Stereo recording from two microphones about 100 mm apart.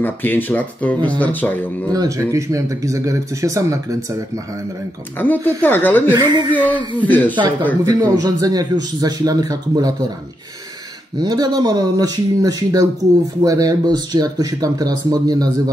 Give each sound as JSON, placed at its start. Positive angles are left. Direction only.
{"t": 0.0, "sound": "speech", "side_deg": 20}
{"t": 1.9, "sound": "speech", "side_deg": -35}
{"t": 5.2, "sound": "speech", "side_deg": 20}
{"t": 6.1, "sound": "speech", "side_deg": -45}
{"t": 6.5, "sound": "speech", "side_deg": 15}
{"t": 7.8, "sound": "speech", "side_deg": -40}
{"t": 11.1, "sound": "speech", "side_deg": -45}